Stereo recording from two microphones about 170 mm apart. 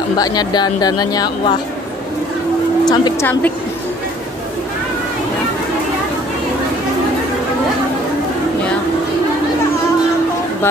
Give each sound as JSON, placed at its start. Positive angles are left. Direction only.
{"t": 0.2, "sound": "speech", "side_deg": 25}
{"t": 2.9, "sound": "speech", "side_deg": 25}